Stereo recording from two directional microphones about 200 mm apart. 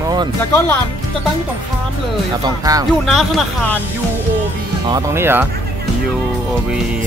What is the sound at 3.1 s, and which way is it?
Speech, centre (ahead or behind).